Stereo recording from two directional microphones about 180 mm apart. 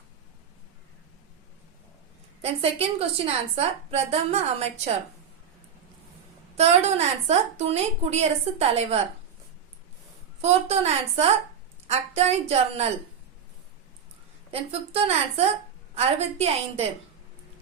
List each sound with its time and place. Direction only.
2.4 s a woman's voice: 35° right (ahead or behind)
6.6 s a woman's voice: 35° right (ahead or behind)
10.4 s a woman's voice: 35° right (ahead or behind)
14.5 s a woman's voice: 35° right (ahead or behind)